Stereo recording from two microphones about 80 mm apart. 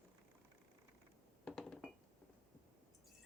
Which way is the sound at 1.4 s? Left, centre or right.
Centre.